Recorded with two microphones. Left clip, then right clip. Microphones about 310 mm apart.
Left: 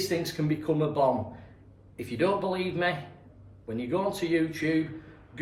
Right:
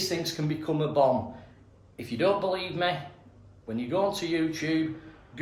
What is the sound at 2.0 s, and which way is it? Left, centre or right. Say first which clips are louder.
Speech: right 1 dB; centre.